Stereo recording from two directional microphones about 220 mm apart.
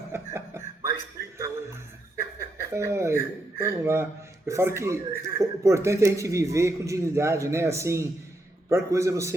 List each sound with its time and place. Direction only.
0.1 s music: 10° right (ahead or behind)
2.4 s speech: 10° right (ahead or behind)